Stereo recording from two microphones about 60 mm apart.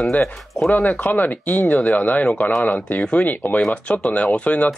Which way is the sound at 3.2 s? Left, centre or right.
Left.